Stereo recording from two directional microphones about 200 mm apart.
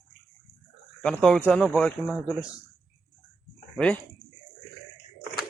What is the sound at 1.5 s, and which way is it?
Speech, centre (ahead or behind).